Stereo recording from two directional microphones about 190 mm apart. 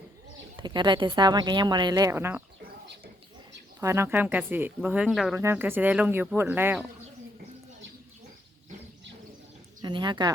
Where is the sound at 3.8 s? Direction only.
15° right (ahead or behind).